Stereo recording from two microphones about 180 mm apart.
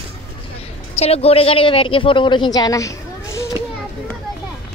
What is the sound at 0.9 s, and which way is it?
Speech, 35° left (ahead or behind).